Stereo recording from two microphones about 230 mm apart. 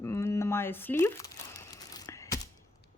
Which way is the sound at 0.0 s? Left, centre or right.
Centre.